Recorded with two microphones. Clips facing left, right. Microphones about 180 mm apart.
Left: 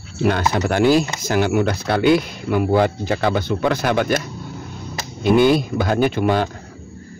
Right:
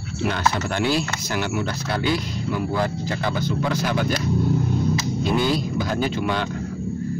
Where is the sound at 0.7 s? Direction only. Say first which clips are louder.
Left 7 dB; 45° left (ahead or behind).